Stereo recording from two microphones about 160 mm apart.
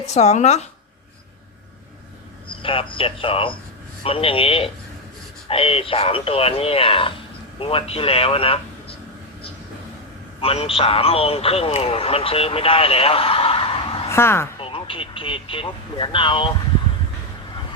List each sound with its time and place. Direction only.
0.0 s speech: 45° left (ahead or behind)
2.5 s a man's voice: 35° left (ahead or behind)
10.4 s a man's voice: 40° left (ahead or behind)
14.1 s a woman's voice: 15° left (ahead or behind)
14.6 s speech: 35° left (ahead or behind)